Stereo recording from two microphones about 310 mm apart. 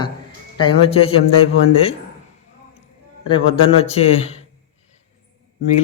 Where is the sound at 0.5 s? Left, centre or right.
Centre.